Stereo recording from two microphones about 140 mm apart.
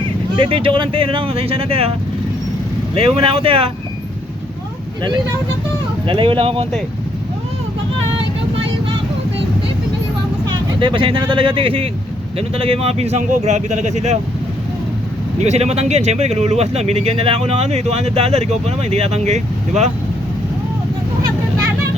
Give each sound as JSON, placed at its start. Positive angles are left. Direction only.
{"t": 0.3, "sound": "speech", "side_deg": -40}
{"t": 3.0, "sound": "speech", "side_deg": -40}
{"t": 6.1, "sound": "speech", "side_deg": -40}
{"t": 10.5, "sound": "speech", "side_deg": -35}
{"t": 15.4, "sound": "speech", "side_deg": -50}